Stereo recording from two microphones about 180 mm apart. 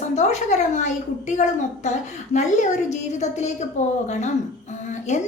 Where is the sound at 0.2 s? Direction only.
40° left (ahead or behind).